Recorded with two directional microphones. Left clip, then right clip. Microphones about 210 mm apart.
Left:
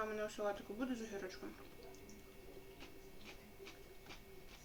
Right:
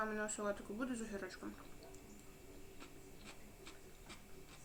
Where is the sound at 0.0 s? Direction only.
30° right (ahead or behind).